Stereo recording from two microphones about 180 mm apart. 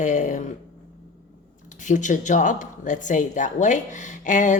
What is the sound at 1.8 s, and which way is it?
Speech, 45° left (ahead or behind).